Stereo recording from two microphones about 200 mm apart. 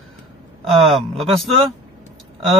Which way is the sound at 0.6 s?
Centre (ahead or behind).